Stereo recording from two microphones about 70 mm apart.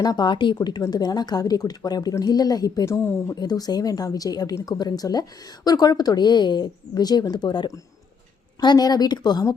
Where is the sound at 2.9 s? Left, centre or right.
Left.